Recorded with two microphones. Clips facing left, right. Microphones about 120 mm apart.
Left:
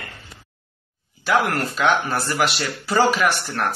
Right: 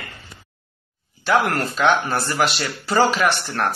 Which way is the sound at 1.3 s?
Centre (ahead or behind).